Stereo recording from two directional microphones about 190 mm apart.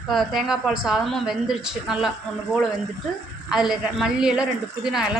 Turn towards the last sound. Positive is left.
turn(degrees=-5)  # may be behind; listen again after turning